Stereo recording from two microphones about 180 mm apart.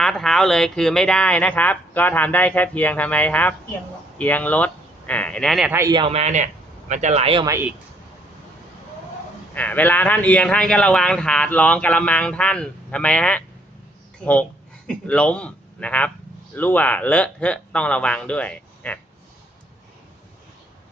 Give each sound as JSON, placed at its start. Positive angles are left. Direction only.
{"t": 0.0, "sound": "speech", "side_deg": 5}
{"t": 5.7, "sound": "speech", "side_deg": -20}
{"t": 6.1, "sound": "speech", "side_deg": -35}
{"t": 7.4, "sound": "speech", "side_deg": -15}
{"t": 9.6, "sound": "speech", "side_deg": 10}
{"t": 14.8, "sound": "a man's voice", "side_deg": 5}